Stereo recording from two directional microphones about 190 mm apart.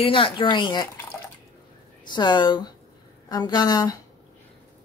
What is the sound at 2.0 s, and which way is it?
Speech, 25° left (ahead or behind).